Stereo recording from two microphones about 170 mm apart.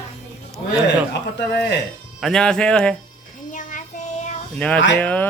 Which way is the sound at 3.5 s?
50° left (ahead or behind).